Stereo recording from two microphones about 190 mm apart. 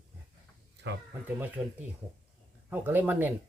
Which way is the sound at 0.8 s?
60° right (ahead or behind).